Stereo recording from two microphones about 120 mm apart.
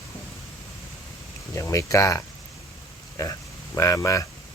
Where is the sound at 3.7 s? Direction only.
25° left (ahead or behind).